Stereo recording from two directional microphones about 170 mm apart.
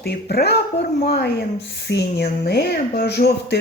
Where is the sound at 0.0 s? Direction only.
70° left (ahead or behind).